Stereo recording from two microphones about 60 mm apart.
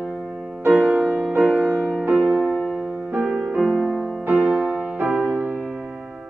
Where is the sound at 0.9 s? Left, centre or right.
Right.